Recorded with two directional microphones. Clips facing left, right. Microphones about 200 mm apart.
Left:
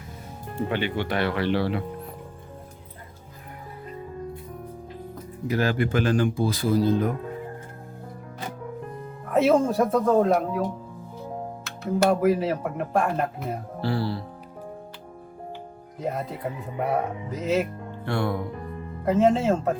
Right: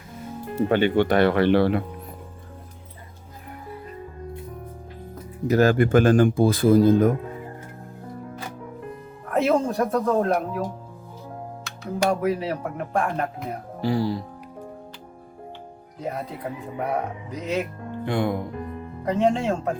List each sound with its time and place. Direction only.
0.7 s speech: 50° right (ahead or behind)
5.5 s speech: 45° right (ahead or behind)
9.3 s speech: centre (ahead or behind)
13.8 s music: 15° right (ahead or behind)
16.0 s speech: centre (ahead or behind)
18.0 s music: 15° right (ahead or behind)
19.0 s speech: centre (ahead or behind)